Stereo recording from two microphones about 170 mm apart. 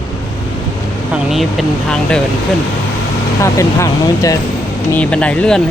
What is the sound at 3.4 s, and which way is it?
Speech, 15° left (ahead or behind).